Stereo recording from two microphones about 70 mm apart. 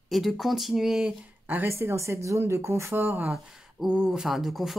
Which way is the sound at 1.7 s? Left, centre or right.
Right.